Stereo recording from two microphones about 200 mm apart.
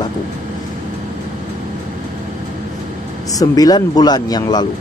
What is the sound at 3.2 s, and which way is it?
A man's voice, 15° left (ahead or behind).